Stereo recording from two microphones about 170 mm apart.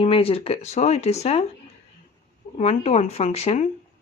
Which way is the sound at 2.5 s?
40° left (ahead or behind).